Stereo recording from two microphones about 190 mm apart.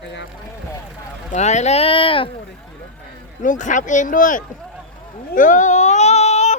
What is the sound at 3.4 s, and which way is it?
Speech, 40° left (ahead or behind).